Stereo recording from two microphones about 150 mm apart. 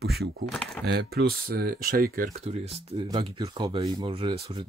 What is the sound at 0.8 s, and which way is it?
Speech, 90° right.